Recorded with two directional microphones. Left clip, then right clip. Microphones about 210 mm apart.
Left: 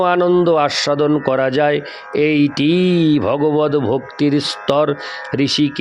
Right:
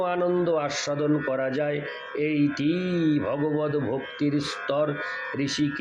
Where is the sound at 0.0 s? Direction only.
50° left (ahead or behind).